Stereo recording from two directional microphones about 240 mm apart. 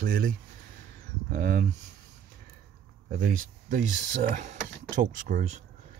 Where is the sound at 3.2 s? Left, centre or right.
Right.